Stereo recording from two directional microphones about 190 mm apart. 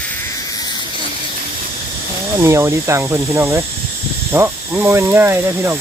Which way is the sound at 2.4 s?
15° right (ahead or behind).